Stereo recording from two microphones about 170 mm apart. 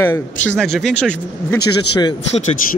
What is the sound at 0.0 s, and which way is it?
Speech, 15° left (ahead or behind).